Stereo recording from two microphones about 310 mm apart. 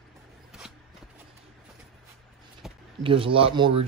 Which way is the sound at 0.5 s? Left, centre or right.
Centre.